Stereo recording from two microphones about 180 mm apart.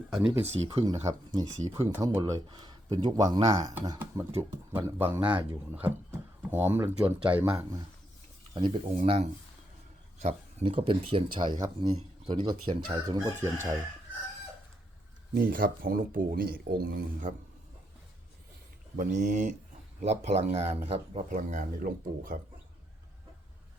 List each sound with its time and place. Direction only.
0.1 s speech: 5° right (ahead or behind)
0.5 s speech: 35° right (ahead or behind)
0.9 s chicken: 20° right (ahead or behind)
4.7 s speech: 10° right (ahead or behind)
8.5 s speech: 25° right (ahead or behind)
10.2 s speech: 35° right (ahead or behind)
11.6 s chicken: 25° right (ahead or behind)
15.4 s speech: 50° right (ahead or behind)
18.9 s speech: 40° right (ahead or behind)
21.2 s speech: 45° right (ahead or behind)